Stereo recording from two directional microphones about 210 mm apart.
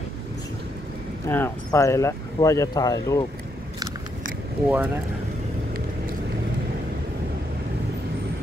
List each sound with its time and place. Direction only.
1.2 s speech: 10° left (ahead or behind)
4.6 s speech: 5° right (ahead or behind)